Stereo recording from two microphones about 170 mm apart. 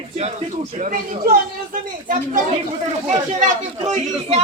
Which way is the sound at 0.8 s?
50° right (ahead or behind).